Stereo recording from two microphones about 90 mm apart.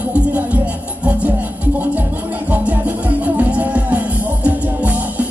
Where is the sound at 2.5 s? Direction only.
20° right (ahead or behind).